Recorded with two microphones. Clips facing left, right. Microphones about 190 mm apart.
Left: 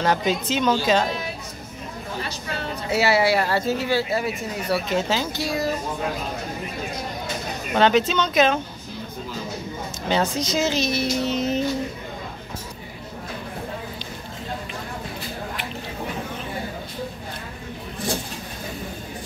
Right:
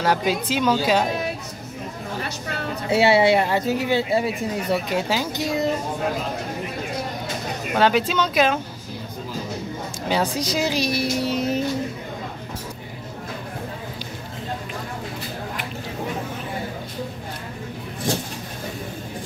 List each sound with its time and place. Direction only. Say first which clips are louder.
0.0 s speech: even; 10° right (ahead or behind)
2.9 s speech: right 3 dB; 25° right (ahead or behind)
7.7 s speech: left 1 dB; 5° right (ahead or behind)
10.0 s speech: even; 10° right (ahead or behind)